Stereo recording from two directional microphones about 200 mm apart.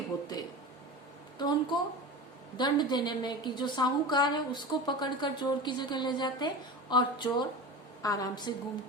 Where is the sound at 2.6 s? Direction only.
20° left (ahead or behind).